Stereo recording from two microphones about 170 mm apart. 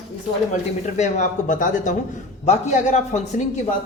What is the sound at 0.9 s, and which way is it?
A man's voice, 45° left (ahead or behind).